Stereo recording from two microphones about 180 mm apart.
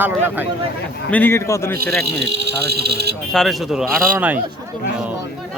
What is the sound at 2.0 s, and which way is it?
Speech, 70° right (ahead or behind).